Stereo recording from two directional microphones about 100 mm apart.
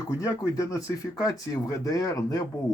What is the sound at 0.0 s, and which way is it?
Speech, 30° left (ahead or behind).